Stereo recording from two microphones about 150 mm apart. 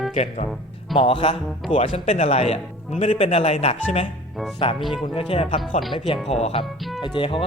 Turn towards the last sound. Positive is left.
turn(degrees=35)  # may be behind; listen again after turning